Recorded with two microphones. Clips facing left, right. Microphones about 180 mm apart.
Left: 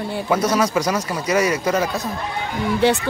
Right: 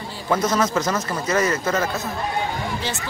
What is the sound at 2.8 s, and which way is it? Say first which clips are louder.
Speech: left 12 dB; 60° left (ahead or behind).